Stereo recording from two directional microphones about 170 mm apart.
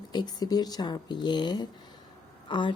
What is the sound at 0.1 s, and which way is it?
Speech, 25° left (ahead or behind).